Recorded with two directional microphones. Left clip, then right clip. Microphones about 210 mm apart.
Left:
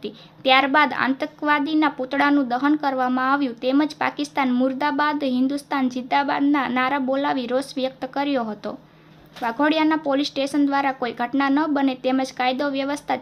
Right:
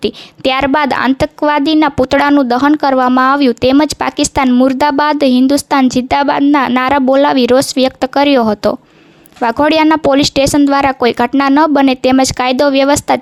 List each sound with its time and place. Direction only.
0.0 s a woman's voice: 55° right (ahead or behind)